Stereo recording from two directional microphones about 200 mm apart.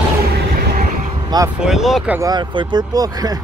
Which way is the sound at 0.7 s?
45° right (ahead or behind).